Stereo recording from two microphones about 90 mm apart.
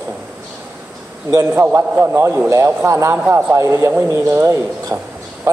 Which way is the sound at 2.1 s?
30° right (ahead or behind).